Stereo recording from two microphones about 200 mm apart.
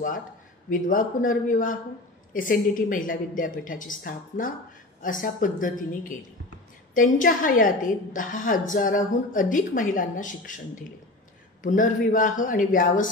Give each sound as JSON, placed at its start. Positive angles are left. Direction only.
{"t": 0.7, "sound": "a woman's voice", "side_deg": 45}